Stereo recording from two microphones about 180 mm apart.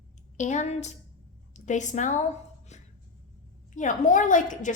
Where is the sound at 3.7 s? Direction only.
45° left (ahead or behind).